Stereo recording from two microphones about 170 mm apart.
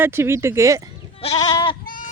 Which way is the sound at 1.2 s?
30° left (ahead or behind).